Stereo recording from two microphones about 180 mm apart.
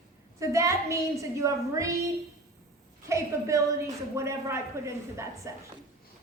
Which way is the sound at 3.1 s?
15° right (ahead or behind).